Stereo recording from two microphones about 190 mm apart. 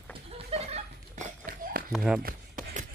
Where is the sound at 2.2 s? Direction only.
45° right (ahead or behind).